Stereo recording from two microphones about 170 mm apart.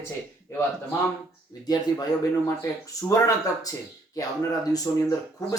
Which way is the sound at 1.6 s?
25° left (ahead or behind).